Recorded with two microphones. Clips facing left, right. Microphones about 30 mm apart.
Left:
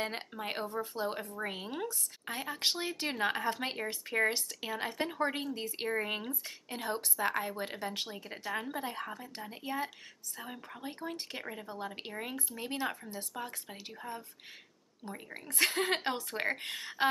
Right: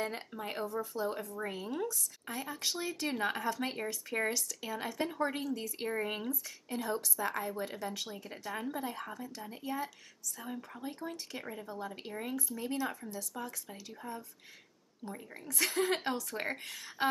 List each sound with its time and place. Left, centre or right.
0.4 s speech: left